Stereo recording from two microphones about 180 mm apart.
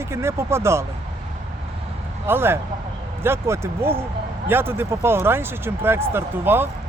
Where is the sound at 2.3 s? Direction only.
15° right (ahead or behind).